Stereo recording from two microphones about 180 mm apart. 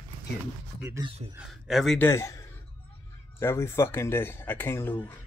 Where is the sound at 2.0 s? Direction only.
15° left (ahead or behind).